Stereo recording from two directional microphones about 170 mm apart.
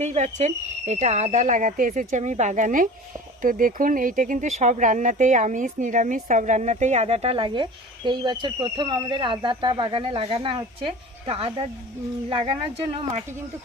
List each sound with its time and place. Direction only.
0.0 s speech: 40° right (ahead or behind)